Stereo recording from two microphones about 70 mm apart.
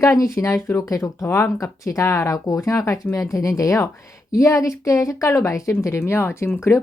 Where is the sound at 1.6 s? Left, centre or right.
Left.